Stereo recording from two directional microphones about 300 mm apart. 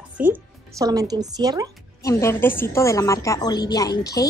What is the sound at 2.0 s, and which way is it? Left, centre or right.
A woman's voice, centre.